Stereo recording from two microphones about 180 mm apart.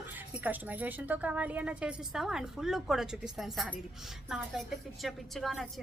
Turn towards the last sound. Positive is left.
turn(degrees=0)  # may be behind; listen again after turning